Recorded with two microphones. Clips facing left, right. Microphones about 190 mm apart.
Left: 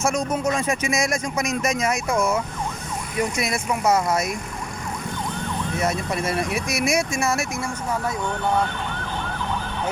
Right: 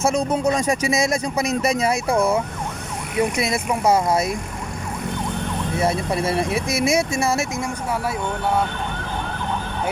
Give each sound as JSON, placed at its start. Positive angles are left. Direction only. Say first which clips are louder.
{"t": 0.0, "sound": "speech", "louder": "right 3 dB", "side_deg": -30}
{"t": 5.8, "sound": "speech", "louder": "right 4 dB", "side_deg": -30}